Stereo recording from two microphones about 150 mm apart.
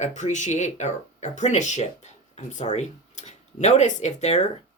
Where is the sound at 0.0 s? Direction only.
55° left (ahead or behind).